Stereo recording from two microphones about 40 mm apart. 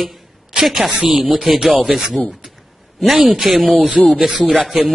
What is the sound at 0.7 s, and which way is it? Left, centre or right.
Speech, centre.